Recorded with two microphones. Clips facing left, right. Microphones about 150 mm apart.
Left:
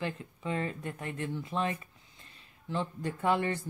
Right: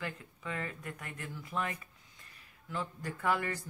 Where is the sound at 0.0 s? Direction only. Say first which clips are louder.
Left 5 dB; 25° left (ahead or behind).